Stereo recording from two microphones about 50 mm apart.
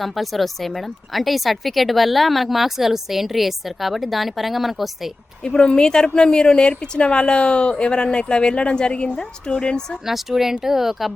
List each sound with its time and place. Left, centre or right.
0.0 s speech: centre
5.4 s a woman's voice: centre
10.1 s speech: centre